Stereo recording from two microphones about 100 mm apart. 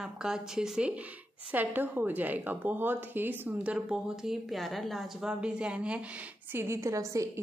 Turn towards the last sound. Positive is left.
turn(degrees=-30)  # may be behind; listen again after turning